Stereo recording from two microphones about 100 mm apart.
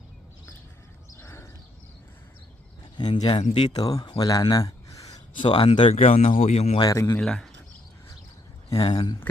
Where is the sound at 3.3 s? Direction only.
65° left (ahead or behind).